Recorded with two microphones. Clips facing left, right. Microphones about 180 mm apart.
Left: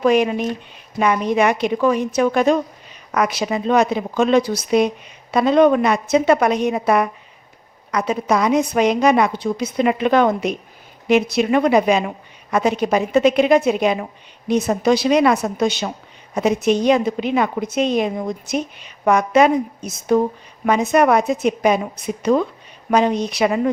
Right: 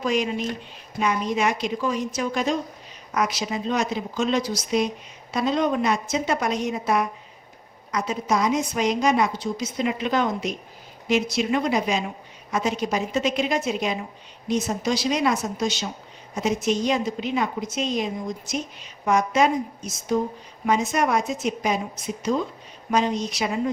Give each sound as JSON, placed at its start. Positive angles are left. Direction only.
{"t": 0.0, "sound": "a woman's voice", "side_deg": 60}